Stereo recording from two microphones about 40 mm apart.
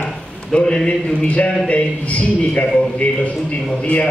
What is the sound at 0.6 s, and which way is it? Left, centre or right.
A man's voice, left.